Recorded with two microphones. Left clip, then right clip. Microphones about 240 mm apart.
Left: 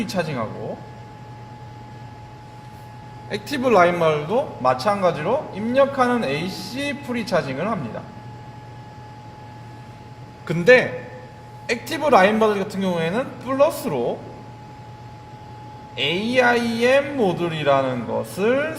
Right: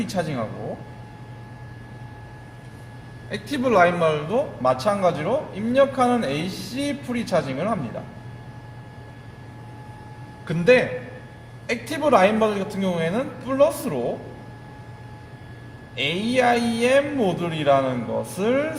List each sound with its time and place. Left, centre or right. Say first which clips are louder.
0.0 s a man's voice: left 2 dB; left
3.2 s a man's voice: left 3 dB; left
10.4 s a man's voice: left 3 dB; left
16.0 s a man's voice: left 2 dB; left